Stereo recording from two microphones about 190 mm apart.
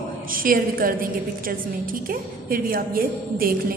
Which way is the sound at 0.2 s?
50° right (ahead or behind).